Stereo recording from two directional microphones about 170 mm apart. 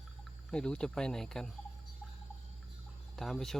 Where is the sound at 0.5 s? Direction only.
5° left (ahead or behind).